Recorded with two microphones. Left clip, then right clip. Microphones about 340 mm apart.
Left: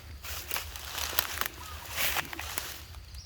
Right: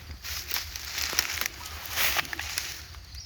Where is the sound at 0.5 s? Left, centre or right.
Left.